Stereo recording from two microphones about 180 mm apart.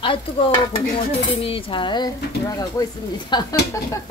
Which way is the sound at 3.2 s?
20° left (ahead or behind).